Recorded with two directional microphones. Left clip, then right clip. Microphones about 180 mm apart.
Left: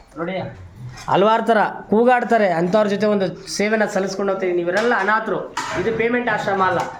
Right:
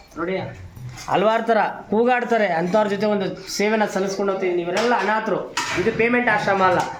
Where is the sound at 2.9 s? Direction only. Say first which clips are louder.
Left 3 dB; 45° left (ahead or behind).